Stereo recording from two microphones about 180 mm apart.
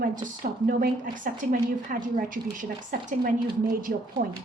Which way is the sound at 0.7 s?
50° right (ahead or behind).